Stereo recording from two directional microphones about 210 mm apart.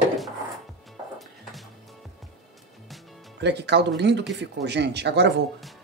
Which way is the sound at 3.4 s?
55° right (ahead or behind).